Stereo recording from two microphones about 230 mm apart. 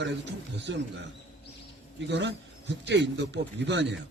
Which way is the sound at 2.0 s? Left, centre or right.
Right.